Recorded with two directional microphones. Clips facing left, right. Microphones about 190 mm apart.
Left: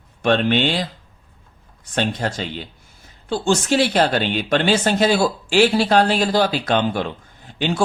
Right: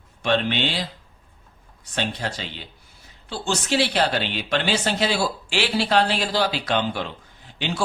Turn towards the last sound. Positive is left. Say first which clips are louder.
# left 6 dB
turn(degrees=50)  # may be behind; listen again after turning